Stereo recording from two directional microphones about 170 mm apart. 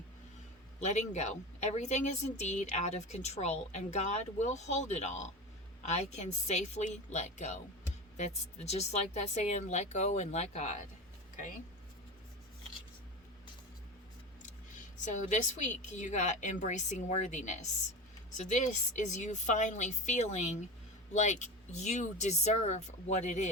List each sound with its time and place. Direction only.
0.8 s speech: 45° left (ahead or behind)
15.0 s speech: 45° left (ahead or behind)